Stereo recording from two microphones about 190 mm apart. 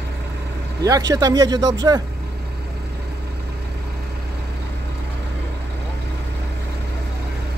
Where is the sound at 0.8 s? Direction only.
20° right (ahead or behind).